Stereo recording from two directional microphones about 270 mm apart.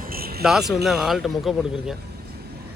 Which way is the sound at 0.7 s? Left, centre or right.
Centre.